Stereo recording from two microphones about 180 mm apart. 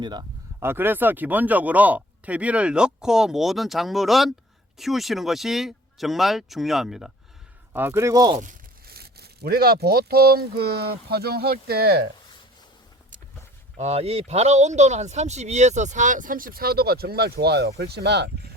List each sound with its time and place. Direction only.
0.0 s speech: 25° right (ahead or behind)
0.6 s speech: 10° right (ahead or behind)
8.9 s speech: 60° right (ahead or behind)
13.7 s speech: 35° right (ahead or behind); by 18.3 s 70° right (ahead or behind)